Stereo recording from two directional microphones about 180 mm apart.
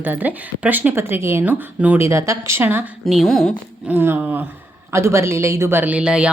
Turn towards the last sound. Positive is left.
turn(degrees=-5)  # may be behind; listen again after turning